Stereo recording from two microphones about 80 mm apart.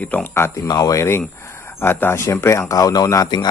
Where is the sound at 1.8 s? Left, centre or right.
Left.